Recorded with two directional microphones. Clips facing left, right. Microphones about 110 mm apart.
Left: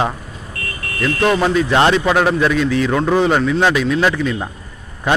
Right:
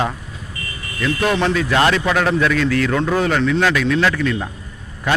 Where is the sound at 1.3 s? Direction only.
10° left (ahead or behind).